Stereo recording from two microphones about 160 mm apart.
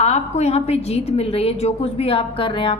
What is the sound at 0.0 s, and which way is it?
A woman's voice, 40° left (ahead or behind).